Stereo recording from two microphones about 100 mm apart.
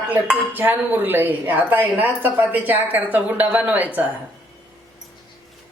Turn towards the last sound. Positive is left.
turn(degrees=-15)  # may be behind; listen again after turning